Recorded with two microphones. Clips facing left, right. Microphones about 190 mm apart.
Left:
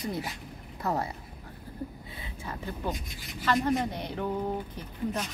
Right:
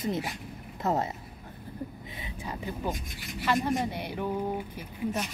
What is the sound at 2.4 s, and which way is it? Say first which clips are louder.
Speech: right 1 dB; 15° right (ahead or behind).